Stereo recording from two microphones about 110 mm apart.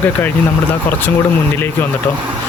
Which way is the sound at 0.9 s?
15° left (ahead or behind).